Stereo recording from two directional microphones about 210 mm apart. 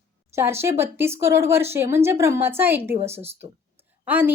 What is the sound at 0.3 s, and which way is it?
A woman's voice, 10° right (ahead or behind).